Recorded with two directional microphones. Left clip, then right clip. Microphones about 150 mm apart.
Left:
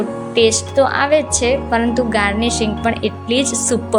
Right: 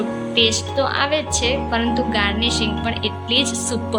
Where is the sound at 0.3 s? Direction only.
40° left (ahead or behind).